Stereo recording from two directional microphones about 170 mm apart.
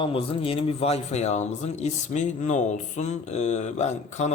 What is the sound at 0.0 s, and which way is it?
Speech, 35° left (ahead or behind).